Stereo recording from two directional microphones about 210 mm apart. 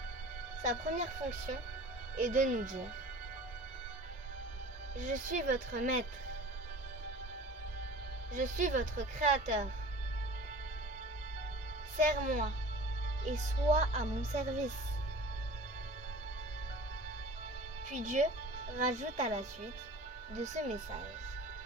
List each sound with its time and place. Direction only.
0.6 s speech: 35° right (ahead or behind)
4.9 s speech: 40° right (ahead or behind)
8.3 s speech: 40° right (ahead or behind)
11.9 s speech: 40° right (ahead or behind)
17.8 s speech: 35° right (ahead or behind)